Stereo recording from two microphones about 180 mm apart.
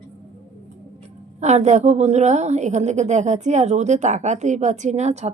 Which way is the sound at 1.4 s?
40° right (ahead or behind).